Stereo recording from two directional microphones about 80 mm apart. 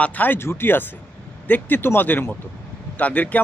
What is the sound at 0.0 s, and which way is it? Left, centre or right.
Speech, left.